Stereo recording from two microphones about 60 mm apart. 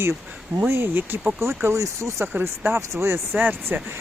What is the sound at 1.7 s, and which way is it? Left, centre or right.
Speech, right.